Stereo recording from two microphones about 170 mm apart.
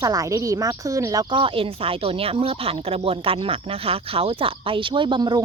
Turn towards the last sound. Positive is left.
turn(degrees=-25)  # may be behind; listen again after turning